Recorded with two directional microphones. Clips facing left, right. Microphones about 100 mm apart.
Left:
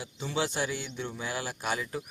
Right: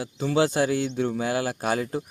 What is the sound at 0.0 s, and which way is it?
Speech, 60° right (ahead or behind).